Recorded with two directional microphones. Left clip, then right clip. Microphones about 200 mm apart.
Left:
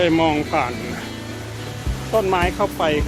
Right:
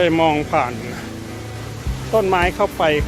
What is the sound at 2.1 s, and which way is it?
Speech, 40° right (ahead or behind).